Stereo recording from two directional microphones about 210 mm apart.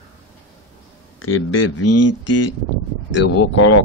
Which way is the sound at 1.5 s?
70° left (ahead or behind).